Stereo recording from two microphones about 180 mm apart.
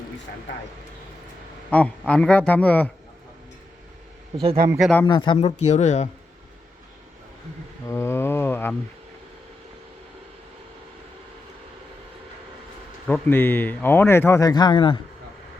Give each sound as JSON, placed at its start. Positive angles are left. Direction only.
{"t": 1.7, "sound": "speech", "side_deg": 5}
{"t": 4.8, "sound": "speech", "side_deg": 5}
{"t": 5.0, "sound": "speech", "side_deg": 25}
{"t": 5.4, "sound": "speech", "side_deg": 40}
{"t": 7.9, "sound": "a sound", "side_deg": 15}
{"t": 13.1, "sound": "speech", "side_deg": 10}